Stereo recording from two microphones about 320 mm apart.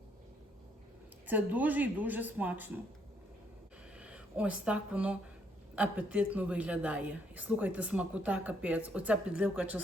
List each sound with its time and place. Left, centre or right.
1.3 s a woman's voice: centre
3.9 s a woman's voice: centre